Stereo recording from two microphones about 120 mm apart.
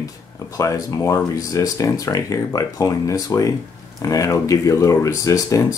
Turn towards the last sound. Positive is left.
turn(degrees=30)  # may be behind; listen again after turning